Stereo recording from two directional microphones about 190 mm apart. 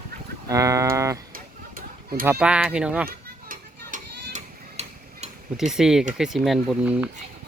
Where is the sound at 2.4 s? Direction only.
5° right (ahead or behind).